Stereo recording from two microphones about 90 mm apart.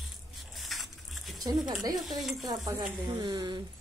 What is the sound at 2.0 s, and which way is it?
Speech, centre (ahead or behind).